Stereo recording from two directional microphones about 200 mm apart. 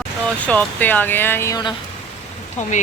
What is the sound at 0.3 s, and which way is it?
Speech, 5° left (ahead or behind).